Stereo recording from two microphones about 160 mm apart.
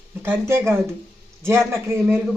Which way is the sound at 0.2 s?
15° right (ahead or behind).